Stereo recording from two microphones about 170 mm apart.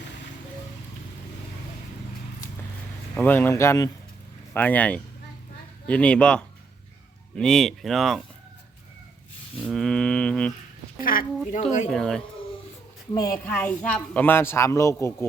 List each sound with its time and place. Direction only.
3.2 s a woman's voice: 10° left (ahead or behind)
9.6 s mantra: centre (ahead or behind)
11.0 s speech: 55° left (ahead or behind)
11.9 s speech: centre (ahead or behind)
13.1 s a woman's voice: 15° left (ahead or behind)